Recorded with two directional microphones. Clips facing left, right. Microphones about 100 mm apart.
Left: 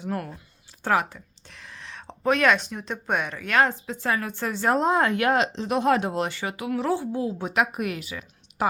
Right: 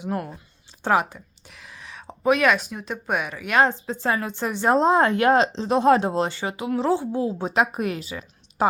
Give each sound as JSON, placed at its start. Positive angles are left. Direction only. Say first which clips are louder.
{"t": 0.0, "sound": "a woman's voice", "louder": "right 2 dB", "side_deg": -20}
{"t": 1.5, "sound": "speech", "louder": "left 1 dB", "side_deg": -5}
{"t": 3.5, "sound": "a woman's voice", "louder": "right 2 dB", "side_deg": -25}